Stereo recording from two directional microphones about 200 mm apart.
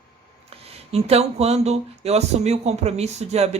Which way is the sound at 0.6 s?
30° right (ahead or behind).